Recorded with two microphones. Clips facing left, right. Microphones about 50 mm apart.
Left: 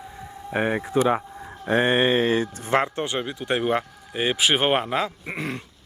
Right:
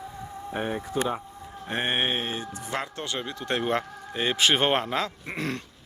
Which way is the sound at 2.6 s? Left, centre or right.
Left.